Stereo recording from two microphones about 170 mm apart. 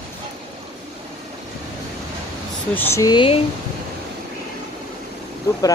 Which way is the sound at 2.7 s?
15° left (ahead or behind).